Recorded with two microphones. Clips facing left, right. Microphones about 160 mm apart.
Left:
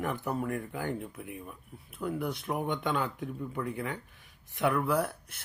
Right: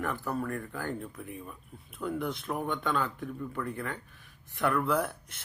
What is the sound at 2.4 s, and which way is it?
Speech, 15° left (ahead or behind).